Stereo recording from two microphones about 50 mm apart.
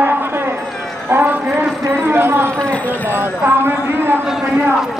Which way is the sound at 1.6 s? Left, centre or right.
Right.